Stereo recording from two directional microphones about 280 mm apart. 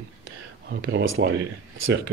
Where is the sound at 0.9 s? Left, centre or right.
Right.